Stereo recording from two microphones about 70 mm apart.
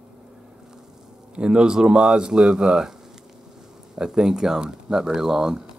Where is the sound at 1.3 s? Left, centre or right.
Centre.